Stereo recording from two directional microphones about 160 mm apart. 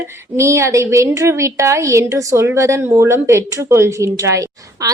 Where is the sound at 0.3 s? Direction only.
15° right (ahead or behind).